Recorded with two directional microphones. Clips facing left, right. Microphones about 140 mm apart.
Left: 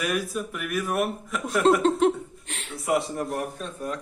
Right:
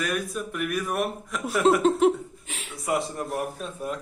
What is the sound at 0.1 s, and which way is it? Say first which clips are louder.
Speech: left 1 dB; centre (ahead or behind).